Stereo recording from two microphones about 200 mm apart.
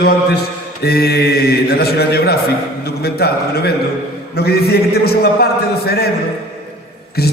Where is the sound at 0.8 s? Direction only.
50° left (ahead or behind).